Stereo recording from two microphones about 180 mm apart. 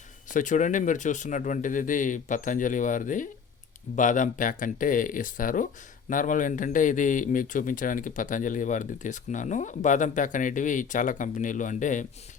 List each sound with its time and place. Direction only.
0.3 s a man's voice: 45° left (ahead or behind)